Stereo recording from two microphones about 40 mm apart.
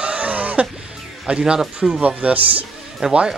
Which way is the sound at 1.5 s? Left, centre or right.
Centre.